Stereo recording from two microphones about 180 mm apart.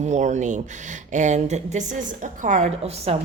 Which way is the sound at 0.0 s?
40° right (ahead or behind).